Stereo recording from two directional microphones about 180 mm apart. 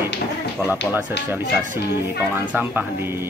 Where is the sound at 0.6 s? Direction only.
5° left (ahead or behind).